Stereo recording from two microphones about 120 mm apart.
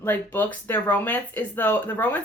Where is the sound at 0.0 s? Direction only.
15° left (ahead or behind).